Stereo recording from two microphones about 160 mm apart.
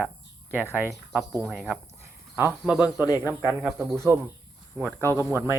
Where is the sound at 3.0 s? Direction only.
20° left (ahead or behind).